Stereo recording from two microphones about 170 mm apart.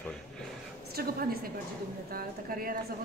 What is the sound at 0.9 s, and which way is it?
A woman's voice, 65° right (ahead or behind).